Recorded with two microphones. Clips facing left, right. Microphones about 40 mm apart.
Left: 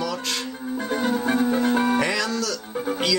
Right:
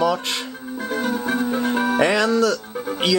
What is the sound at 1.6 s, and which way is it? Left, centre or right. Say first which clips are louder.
Music: even; centre.